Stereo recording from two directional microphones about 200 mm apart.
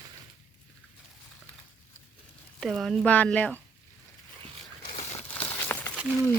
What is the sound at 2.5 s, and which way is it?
Speech, centre (ahead or behind).